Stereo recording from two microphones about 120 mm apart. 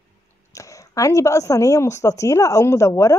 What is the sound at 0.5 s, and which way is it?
Speech, 25° left (ahead or behind).